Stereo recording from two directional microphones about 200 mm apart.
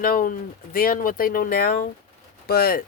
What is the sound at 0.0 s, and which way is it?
Speech, 45° left (ahead or behind).